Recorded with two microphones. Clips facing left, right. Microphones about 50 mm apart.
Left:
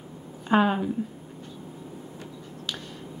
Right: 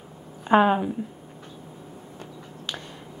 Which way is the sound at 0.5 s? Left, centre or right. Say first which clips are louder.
Right 3 dB; centre.